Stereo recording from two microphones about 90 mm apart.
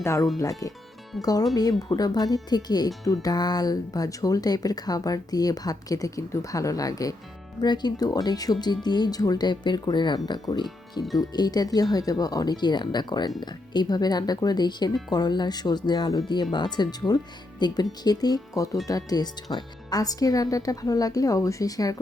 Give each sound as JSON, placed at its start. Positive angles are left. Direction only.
{"t": 0.0, "sound": "speech", "side_deg": 30}
{"t": 7.6, "sound": "speech", "side_deg": 50}